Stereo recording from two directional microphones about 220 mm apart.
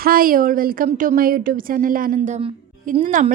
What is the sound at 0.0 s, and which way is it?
A woman's voice, 40° right (ahead or behind).